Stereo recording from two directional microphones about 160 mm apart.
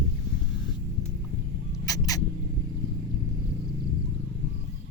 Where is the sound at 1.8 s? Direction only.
20° left (ahead or behind).